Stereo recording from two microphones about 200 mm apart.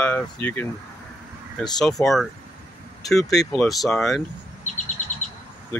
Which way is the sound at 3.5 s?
Centre (ahead or behind).